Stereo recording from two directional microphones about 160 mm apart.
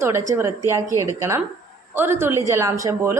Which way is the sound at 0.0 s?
15° right (ahead or behind).